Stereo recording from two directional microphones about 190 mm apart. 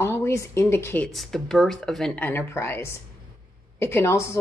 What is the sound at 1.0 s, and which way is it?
A woman's voice, centre (ahead or behind).